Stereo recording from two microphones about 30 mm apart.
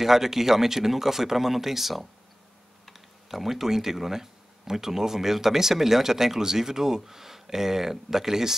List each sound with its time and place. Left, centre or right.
0.0 s speech: centre